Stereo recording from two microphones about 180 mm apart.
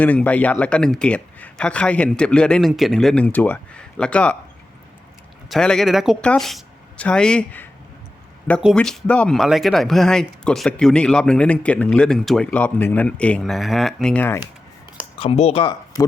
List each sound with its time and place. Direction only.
0.0 s speech: 10° left (ahead or behind)
5.5 s speech: 5° left (ahead or behind)
8.7 s speech: 5° left (ahead or behind)
15.2 s speech: 35° left (ahead or behind)